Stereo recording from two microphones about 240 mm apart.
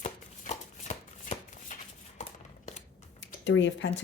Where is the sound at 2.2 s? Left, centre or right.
Left.